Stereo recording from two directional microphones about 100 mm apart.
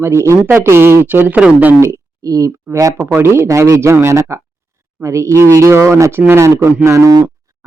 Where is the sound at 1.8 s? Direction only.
30° right (ahead or behind).